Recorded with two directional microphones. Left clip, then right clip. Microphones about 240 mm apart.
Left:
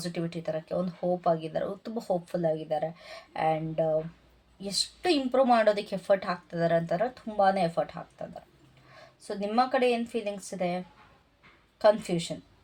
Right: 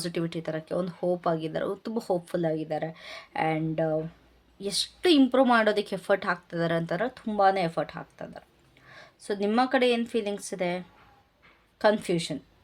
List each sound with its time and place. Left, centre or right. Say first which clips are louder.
0.0 s speech: right 2 dB; right